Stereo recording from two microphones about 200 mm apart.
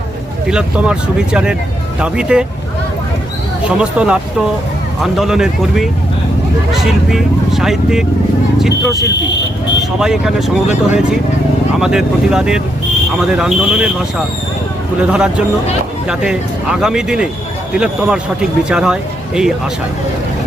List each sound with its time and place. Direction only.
0.4 s speech: 5° right (ahead or behind)
3.6 s speech: 5° right (ahead or behind)
9.0 s speech: 60° left (ahead or behind)
10.0 s speech: centre (ahead or behind)
11.8 s speech: 5° right (ahead or behind)
15.0 s speech: 5° right (ahead or behind)